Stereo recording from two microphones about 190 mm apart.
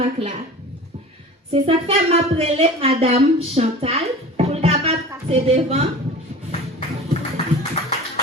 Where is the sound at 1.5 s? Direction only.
30° right (ahead or behind).